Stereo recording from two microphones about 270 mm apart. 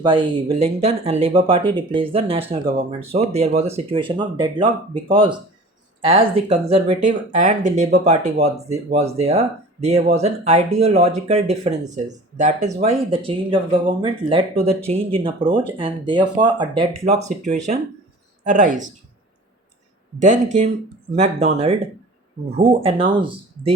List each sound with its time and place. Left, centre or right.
0.0 s speech: centre
20.2 s speech: right